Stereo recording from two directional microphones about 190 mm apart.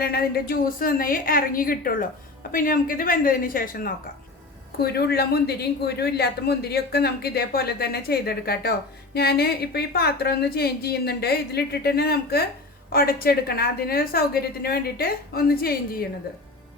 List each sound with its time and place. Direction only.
0.0 s a woman's voice: 55° left (ahead or behind)